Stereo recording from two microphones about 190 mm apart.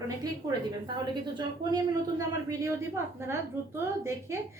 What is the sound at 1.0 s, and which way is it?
Speech, 25° right (ahead or behind).